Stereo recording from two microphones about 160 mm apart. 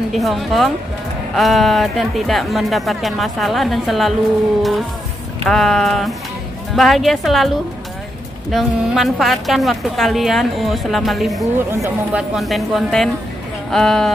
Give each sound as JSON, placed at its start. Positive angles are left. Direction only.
{"t": 0.1, "sound": "a woman's voice", "side_deg": 0}
{"t": 5.4, "sound": "a woman's voice", "side_deg": 0}
{"t": 11.5, "sound": "a woman's voice", "side_deg": -10}